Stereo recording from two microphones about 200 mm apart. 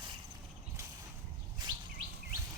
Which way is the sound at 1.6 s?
20° right (ahead or behind).